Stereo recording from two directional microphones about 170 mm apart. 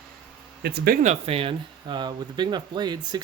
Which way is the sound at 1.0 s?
40° right (ahead or behind).